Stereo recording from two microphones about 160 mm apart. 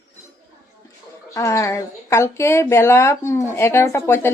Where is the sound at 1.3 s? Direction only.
20° left (ahead or behind).